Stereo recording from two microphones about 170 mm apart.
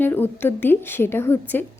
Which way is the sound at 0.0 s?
10° left (ahead or behind).